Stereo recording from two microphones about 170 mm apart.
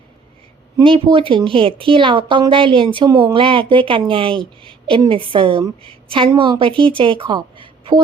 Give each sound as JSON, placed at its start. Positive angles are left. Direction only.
{"t": 0.9, "sound": "a woman's voice", "side_deg": -30}